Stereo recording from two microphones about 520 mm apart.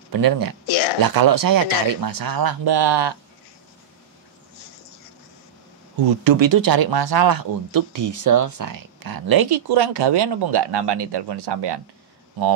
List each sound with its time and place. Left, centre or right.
0.1 s speech: right
0.7 s a sound: left
1.0 s speech: right
5.9 s speech: right